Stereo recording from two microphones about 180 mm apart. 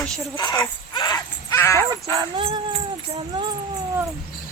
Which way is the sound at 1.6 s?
15° left (ahead or behind).